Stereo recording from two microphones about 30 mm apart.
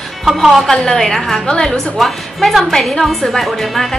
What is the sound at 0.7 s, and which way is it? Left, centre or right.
Speech, centre.